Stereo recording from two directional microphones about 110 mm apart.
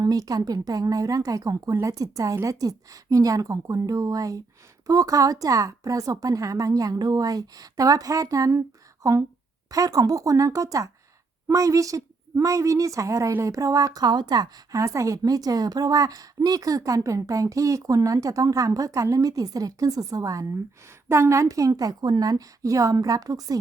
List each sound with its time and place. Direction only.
0.0 s a woman's voice: 35° right (ahead or behind)